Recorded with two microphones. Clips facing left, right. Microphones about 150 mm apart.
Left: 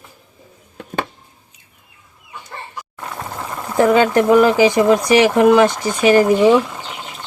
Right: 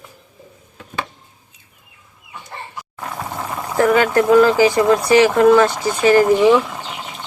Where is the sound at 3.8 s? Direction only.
20° left (ahead or behind).